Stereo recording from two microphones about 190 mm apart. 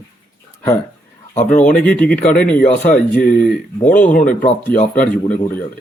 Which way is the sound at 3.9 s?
10° left (ahead or behind).